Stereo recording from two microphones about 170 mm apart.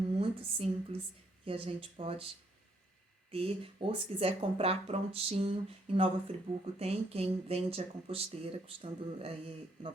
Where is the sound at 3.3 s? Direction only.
35° right (ahead or behind).